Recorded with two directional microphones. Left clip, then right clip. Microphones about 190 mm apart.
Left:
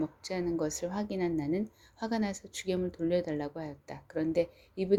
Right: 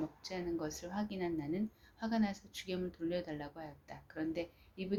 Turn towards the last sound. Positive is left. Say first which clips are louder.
# left 12 dB
turn(degrees=45)  # may be behind; listen again after turning